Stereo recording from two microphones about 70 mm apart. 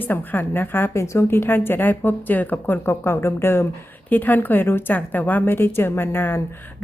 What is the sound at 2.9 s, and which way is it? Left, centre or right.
Speech, left.